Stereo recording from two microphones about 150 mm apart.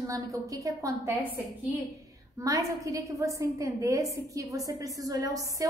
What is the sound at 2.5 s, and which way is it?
A woman's voice, 20° right (ahead or behind).